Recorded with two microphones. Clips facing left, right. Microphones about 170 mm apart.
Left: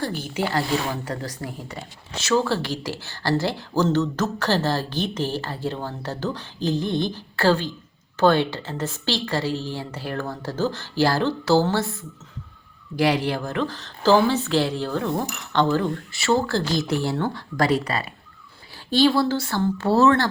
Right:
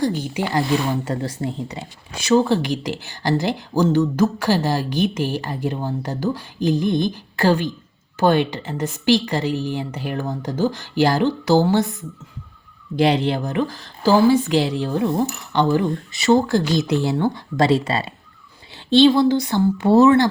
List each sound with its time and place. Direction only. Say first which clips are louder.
0.0 s speech: right 4 dB; 15° right (ahead or behind)